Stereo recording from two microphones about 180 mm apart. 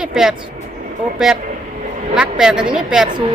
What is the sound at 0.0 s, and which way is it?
Speech, 5° right (ahead or behind).